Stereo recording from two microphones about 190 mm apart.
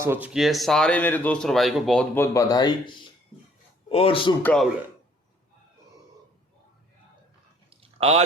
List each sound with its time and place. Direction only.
0.0 s speech: 10° right (ahead or behind)
2.1 s speech: 15° left (ahead or behind)
4.4 s speech: 5° left (ahead or behind)
7.7 s a sound: 30° right (ahead or behind)